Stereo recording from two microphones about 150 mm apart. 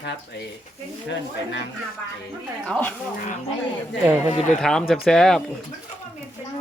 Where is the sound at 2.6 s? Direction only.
5° left (ahead or behind).